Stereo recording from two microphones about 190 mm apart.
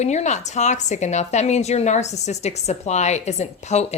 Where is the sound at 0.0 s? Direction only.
35° left (ahead or behind).